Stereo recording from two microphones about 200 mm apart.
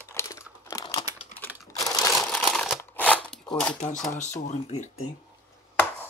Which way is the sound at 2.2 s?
Centre (ahead or behind).